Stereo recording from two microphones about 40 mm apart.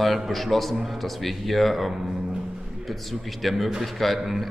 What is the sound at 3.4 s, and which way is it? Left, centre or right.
Speech, centre.